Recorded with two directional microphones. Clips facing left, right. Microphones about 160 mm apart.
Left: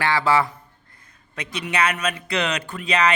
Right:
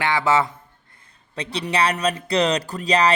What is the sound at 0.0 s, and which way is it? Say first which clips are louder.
A man's voice: even; 20° right (ahead or behind).